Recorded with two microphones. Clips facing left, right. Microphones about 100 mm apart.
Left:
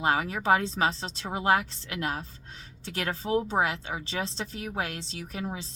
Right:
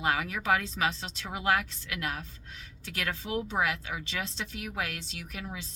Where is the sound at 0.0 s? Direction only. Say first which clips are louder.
Left 3 dB; 30° left (ahead or behind).